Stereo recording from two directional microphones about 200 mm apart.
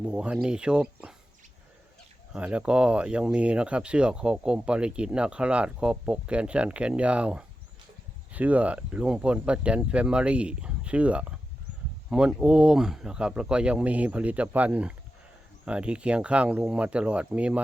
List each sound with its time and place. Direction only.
0.1 s speech: 5° right (ahead or behind)
2.3 s speech: 5° right (ahead or behind)